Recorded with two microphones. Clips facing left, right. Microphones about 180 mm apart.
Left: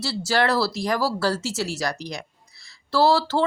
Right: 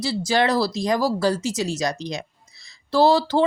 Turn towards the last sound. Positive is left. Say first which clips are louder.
# right 2 dB
turn(degrees=-15)  # may be behind; listen again after turning